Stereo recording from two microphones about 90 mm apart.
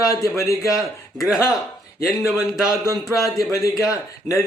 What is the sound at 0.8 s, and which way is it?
Speech, 5° right (ahead or behind).